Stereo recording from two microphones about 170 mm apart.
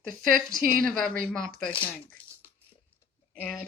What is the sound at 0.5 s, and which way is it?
Speech, 5° left (ahead or behind).